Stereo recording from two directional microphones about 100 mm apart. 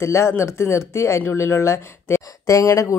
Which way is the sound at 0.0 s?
25° left (ahead or behind).